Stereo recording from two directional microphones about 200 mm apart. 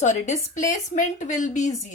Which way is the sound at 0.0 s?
35° left (ahead or behind).